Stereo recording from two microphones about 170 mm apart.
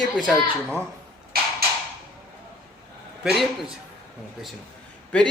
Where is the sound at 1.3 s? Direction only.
60° right (ahead or behind).